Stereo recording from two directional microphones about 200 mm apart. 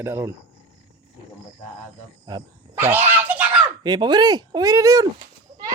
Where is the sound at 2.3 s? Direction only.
20° right (ahead or behind).